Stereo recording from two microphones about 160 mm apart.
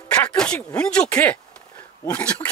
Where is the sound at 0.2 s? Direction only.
10° left (ahead or behind).